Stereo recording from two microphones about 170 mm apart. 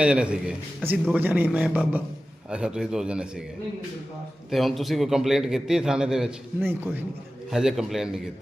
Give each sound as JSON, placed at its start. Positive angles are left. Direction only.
{"t": 0.0, "sound": "a man's voice", "side_deg": -5}
{"t": 4.5, "sound": "a man's voice", "side_deg": 0}